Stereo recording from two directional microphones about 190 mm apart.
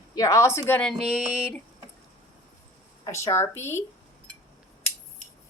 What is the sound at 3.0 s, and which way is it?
Speech, 15° left (ahead or behind).